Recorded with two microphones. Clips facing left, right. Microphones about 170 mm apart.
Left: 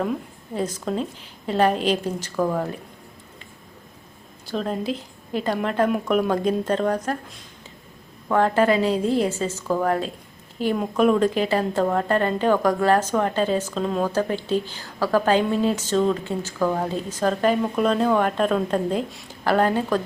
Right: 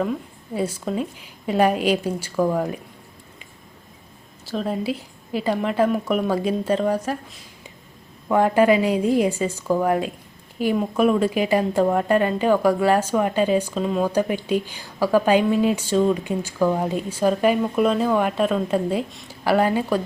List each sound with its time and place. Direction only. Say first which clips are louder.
0.0 s speech: right 1 dB; 5° right (ahead or behind)
4.4 s a woman's voice: right 1 dB; 5° right (ahead or behind)